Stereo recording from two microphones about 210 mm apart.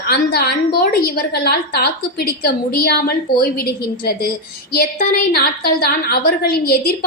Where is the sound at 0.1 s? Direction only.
45° left (ahead or behind).